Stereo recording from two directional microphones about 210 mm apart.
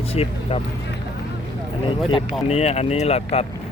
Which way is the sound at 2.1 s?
30° left (ahead or behind).